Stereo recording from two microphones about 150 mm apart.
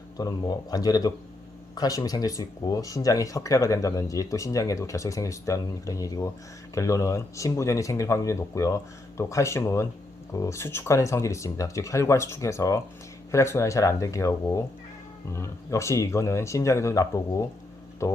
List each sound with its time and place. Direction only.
0.2 s speech: 25° left (ahead or behind)